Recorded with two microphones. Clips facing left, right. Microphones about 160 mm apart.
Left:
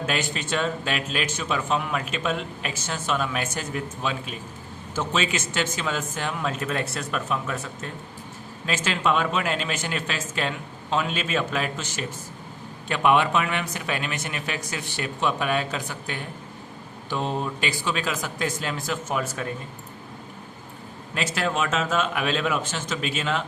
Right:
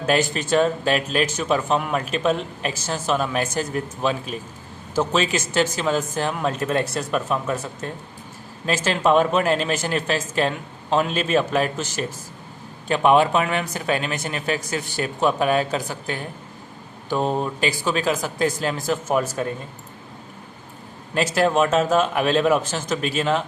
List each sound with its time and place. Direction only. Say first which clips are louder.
0.0 s a man's voice: right 7 dB; 40° right (ahead or behind)
8.6 s a man's voice: right 5 dB; 40° right (ahead or behind)
21.2 s a man's voice: right 7 dB; 40° right (ahead or behind)